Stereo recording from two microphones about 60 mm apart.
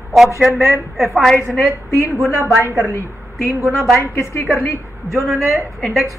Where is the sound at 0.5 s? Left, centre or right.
Right.